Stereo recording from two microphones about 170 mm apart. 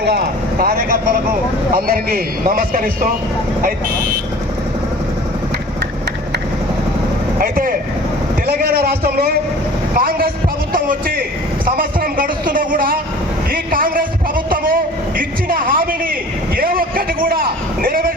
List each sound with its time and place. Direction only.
0.0 s a man's voice: 75° right (ahead or behind); by 3.1 s 55° right (ahead or behind)
7.3 s a man's voice: 55° right (ahead or behind)